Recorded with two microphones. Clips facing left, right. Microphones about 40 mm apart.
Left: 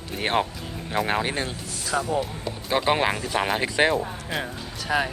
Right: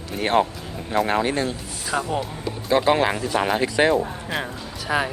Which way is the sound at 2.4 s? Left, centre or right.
Centre.